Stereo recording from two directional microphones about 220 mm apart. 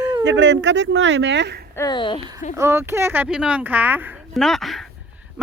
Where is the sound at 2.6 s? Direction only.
10° right (ahead or behind).